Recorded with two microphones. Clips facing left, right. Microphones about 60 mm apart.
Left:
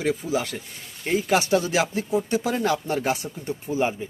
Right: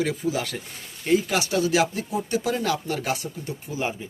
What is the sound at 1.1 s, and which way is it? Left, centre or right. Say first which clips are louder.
Speech: left 1 dB; left.